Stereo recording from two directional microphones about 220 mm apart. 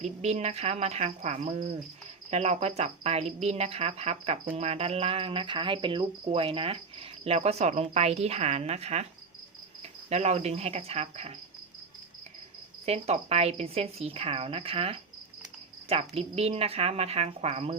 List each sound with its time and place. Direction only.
0.0 s speech: 30° right (ahead or behind)
10.1 s speech: 30° right (ahead or behind)
12.8 s speech: 30° right (ahead or behind)